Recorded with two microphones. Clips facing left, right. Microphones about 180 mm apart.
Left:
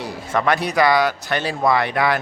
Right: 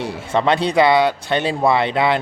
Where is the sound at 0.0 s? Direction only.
25° right (ahead or behind).